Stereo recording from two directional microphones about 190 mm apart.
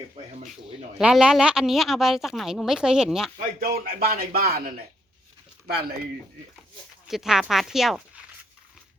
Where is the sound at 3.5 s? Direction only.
50° right (ahead or behind).